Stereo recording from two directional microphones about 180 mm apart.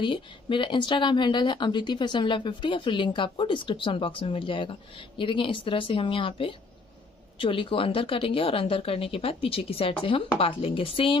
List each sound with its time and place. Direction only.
0.0 s speech: 25° left (ahead or behind)